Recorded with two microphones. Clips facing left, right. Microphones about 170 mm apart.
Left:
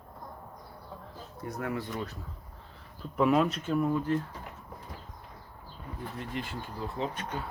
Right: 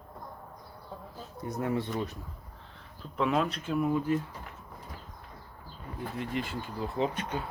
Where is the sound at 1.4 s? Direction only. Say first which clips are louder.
Right 3 dB; 20° right (ahead or behind).